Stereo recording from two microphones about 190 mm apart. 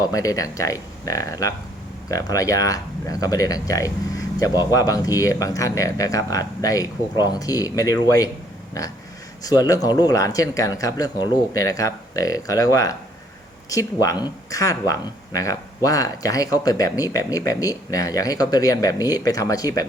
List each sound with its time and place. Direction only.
0.0 s speech: 20° left (ahead or behind)
9.4 s speech: 20° left (ahead or behind)